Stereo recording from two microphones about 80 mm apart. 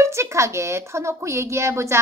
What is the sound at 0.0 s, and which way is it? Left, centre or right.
A child's voice, right.